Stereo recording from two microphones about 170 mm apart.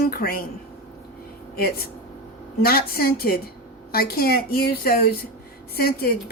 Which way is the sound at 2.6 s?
60° left (ahead or behind).